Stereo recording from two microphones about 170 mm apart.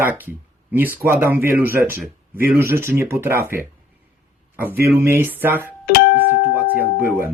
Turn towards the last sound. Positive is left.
turn(degrees=-15)  # may be behind; listen again after turning